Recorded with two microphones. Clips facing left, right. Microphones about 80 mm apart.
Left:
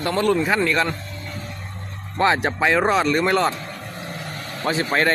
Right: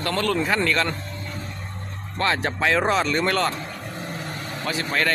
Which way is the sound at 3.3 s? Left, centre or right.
Centre.